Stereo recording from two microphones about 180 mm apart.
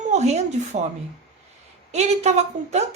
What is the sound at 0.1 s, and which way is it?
Speech, 40° right (ahead or behind).